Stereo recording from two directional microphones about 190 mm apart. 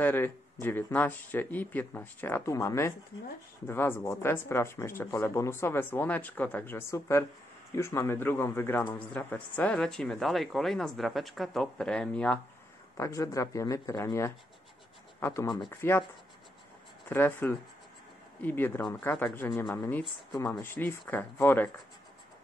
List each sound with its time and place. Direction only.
0.0 s speech: 10° left (ahead or behind)
12.9 s speech: 15° left (ahead or behind)
17.1 s speech: 10° left (ahead or behind)